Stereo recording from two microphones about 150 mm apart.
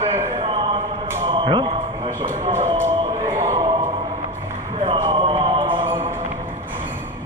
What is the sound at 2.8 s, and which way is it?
Music, 20° right (ahead or behind).